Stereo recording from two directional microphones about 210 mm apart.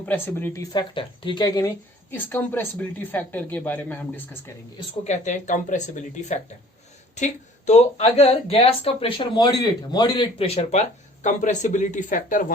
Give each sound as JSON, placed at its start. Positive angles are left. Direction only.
{"t": 0.0, "sound": "speech", "side_deg": 10}
{"t": 5.0, "sound": "speech", "side_deg": 35}